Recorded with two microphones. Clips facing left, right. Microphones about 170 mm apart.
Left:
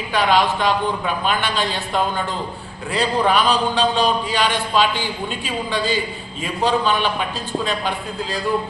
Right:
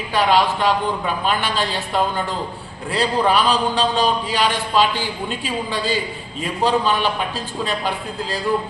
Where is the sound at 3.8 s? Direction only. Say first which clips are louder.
Left 1 dB; 35° right (ahead or behind).